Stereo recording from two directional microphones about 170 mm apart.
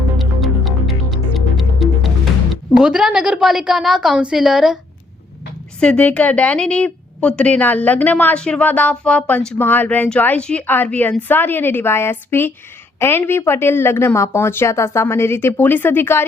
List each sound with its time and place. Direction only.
0.2 s music: centre (ahead or behind)
2.7 s a woman's voice: 5° right (ahead or behind)
5.8 s a woman's voice: 5° left (ahead or behind)